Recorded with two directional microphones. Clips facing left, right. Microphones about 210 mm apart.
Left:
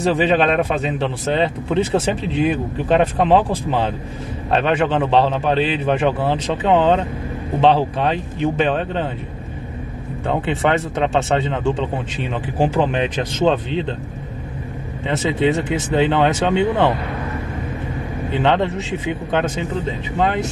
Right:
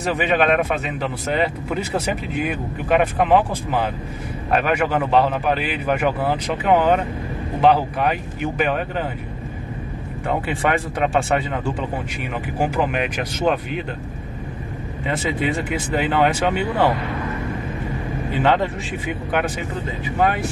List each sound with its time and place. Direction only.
0.0 s speech: 30° left (ahead or behind)
10.2 s speech: 25° left (ahead or behind)
15.0 s speech: 25° left (ahead or behind)
18.3 s speech: 20° left (ahead or behind)